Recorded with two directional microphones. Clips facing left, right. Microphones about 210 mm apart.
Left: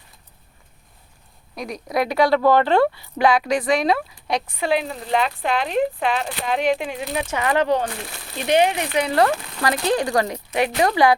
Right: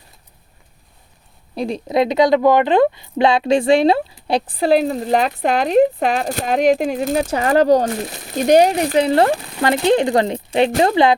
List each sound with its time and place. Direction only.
1.5 s a woman's voice: 30° right (ahead or behind)